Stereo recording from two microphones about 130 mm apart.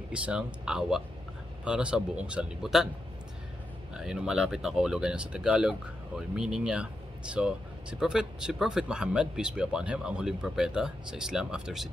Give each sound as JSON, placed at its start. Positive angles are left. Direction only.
{"t": 0.1, "sound": "a man's voice", "side_deg": -10}
{"t": 3.9, "sound": "speech", "side_deg": -5}